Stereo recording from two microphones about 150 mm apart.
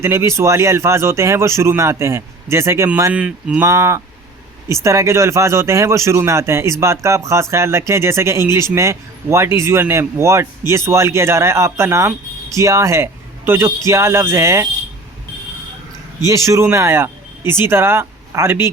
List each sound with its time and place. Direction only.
0.0 s a man's voice: 15° right (ahead or behind)
3.6 s a man's voice: 20° right (ahead or behind)
16.2 s a man's voice: 20° right (ahead or behind)